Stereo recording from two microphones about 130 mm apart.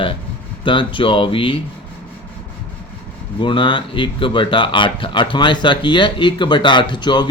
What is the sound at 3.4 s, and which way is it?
Speech, 40° left (ahead or behind).